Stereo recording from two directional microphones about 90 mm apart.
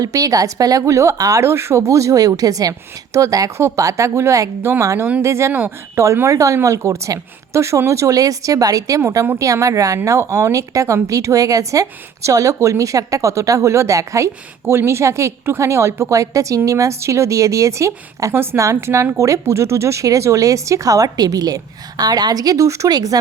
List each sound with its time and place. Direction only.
0.0 s a woman's voice: 40° right (ahead or behind)